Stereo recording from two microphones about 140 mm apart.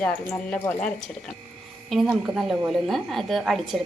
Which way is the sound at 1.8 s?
Centre (ahead or behind).